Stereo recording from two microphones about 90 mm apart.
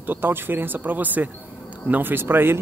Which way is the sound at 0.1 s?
20° right (ahead or behind).